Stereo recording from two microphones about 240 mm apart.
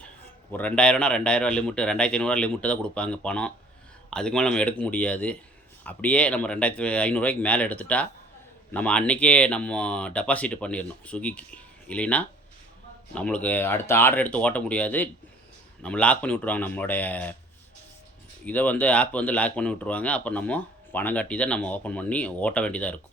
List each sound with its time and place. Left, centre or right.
0.5 s speech: centre
18.4 s speech: centre